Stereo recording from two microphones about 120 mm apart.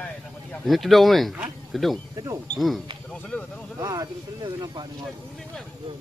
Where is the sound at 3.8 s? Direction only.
35° right (ahead or behind).